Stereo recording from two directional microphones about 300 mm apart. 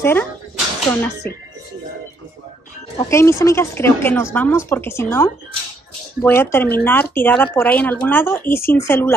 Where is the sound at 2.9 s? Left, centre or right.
Centre.